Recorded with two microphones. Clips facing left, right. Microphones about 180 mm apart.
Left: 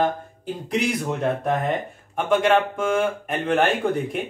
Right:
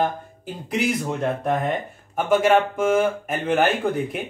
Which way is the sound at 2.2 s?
5° right (ahead or behind).